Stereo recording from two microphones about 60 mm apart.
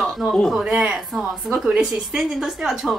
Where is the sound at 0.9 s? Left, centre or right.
Centre.